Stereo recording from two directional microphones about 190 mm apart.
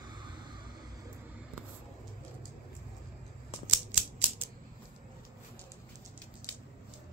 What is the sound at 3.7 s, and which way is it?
Scissors, 5° right (ahead or behind).